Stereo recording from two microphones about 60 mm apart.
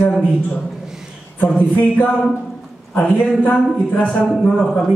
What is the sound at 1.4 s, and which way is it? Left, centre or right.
Speech, left.